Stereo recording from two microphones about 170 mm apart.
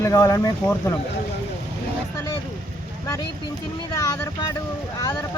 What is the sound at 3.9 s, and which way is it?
Speech, 20° left (ahead or behind).